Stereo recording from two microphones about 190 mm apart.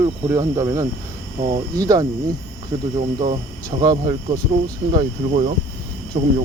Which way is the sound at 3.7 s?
25° right (ahead or behind).